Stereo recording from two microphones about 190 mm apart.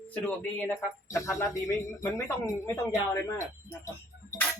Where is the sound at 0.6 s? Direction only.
10° left (ahead or behind).